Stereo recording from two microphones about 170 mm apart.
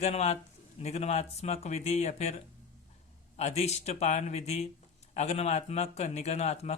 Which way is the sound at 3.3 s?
40° left (ahead or behind).